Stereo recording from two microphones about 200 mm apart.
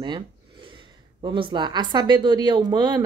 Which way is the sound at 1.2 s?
25° right (ahead or behind).